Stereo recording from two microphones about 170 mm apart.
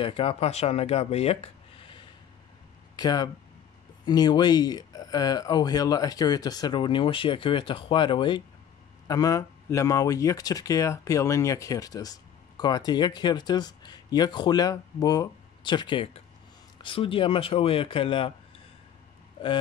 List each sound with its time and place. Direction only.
0.0 s speech: 30° left (ahead or behind)
3.0 s speech: 25° left (ahead or behind)